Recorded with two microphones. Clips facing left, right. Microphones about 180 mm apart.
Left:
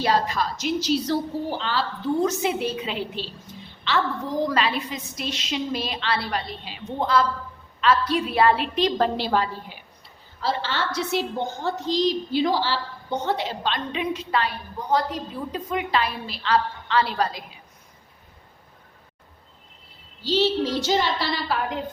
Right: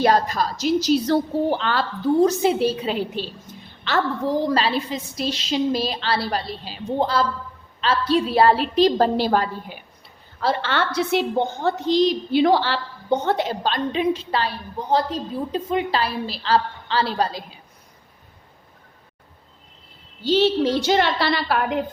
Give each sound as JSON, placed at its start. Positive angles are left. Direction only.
{"t": 0.0, "sound": "a woman's voice", "side_deg": -45}
{"t": 1.0, "sound": "a woman's voice", "side_deg": -60}
{"t": 2.2, "sound": "a woman's voice", "side_deg": -35}
{"t": 4.3, "sound": "a woman's voice", "side_deg": -30}
{"t": 10.4, "sound": "a woman's voice", "side_deg": -60}
{"t": 20.2, "sound": "a woman's voice", "side_deg": -55}